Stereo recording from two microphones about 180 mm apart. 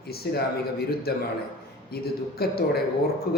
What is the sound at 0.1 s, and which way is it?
Speech, 60° left (ahead or behind).